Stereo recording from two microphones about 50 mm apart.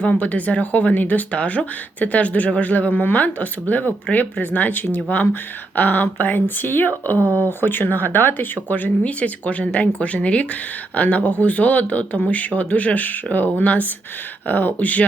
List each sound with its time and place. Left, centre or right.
0.0 s speech: left